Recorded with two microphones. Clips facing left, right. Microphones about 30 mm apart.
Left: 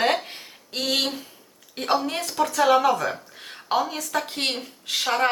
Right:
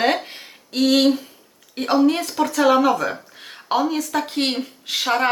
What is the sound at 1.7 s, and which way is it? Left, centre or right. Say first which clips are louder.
Speech: right 7 dB; centre.